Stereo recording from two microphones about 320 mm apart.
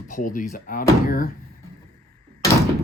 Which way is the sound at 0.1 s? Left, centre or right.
Left.